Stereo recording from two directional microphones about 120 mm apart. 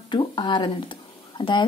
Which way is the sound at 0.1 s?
40° left (ahead or behind).